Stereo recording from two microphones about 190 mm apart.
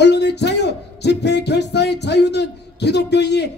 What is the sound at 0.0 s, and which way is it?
Music, 65° left (ahead or behind).